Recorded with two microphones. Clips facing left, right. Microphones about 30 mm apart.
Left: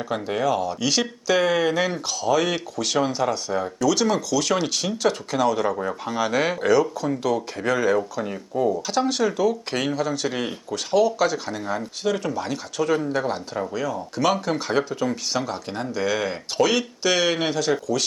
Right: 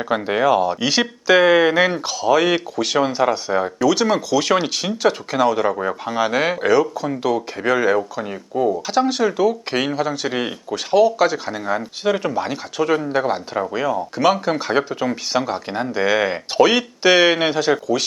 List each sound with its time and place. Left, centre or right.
0.0 s speech: right